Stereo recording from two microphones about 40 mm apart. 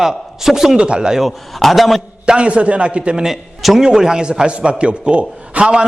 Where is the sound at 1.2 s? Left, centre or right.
Centre.